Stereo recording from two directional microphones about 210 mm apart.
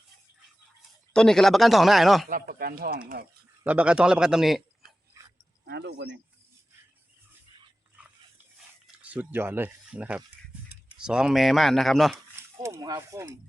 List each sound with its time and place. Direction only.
1.1 s speech: 5° left (ahead or behind)
2.3 s speech: 45° right (ahead or behind)
3.7 s speech: 5° right (ahead or behind)
5.6 s speech: 50° right (ahead or behind)
9.0 s speech: 10° right (ahead or behind)
12.1 s speech: 15° right (ahead or behind)